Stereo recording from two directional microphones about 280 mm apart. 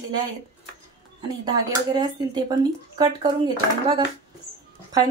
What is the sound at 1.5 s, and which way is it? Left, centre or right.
Speech, centre.